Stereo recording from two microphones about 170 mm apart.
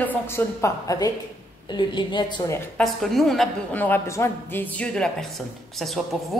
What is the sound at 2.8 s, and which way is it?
A woman's voice, centre (ahead or behind).